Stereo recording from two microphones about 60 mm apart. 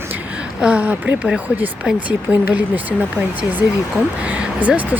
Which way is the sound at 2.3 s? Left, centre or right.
Right.